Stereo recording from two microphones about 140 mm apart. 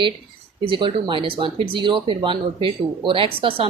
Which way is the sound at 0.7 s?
35° right (ahead or behind).